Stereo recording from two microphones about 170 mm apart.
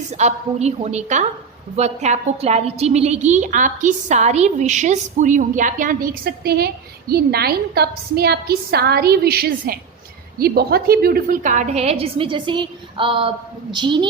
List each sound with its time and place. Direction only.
0.1 s a woman's voice: 40° right (ahead or behind)